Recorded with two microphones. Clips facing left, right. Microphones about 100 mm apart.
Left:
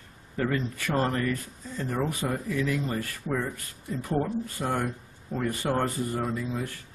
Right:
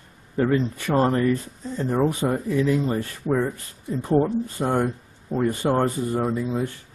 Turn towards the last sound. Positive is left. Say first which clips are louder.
# right 6 dB
turn(degrees=-25)  # may be behind; listen again after turning